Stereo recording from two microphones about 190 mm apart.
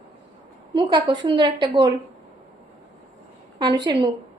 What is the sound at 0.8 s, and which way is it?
A woman's voice, 25° right (ahead or behind).